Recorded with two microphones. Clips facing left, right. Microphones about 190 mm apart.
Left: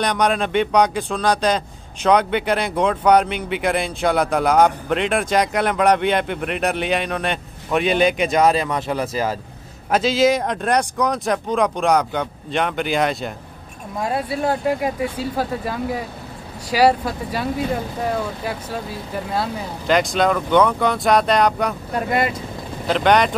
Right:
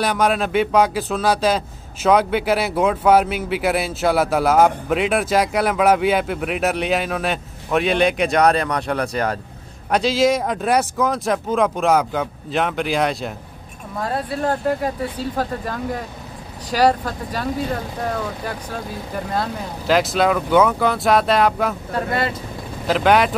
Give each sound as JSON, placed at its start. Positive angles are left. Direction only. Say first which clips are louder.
{"t": 0.0, "sound": "speech", "louder": "right 1 dB", "side_deg": -5}
{"t": 13.9, "sound": "speech", "louder": "left 1 dB", "side_deg": 10}
{"t": 21.9, "sound": "speech", "louder": "left 4 dB", "side_deg": 15}
{"t": 22.8, "sound": "speech", "louder": "even", "side_deg": -5}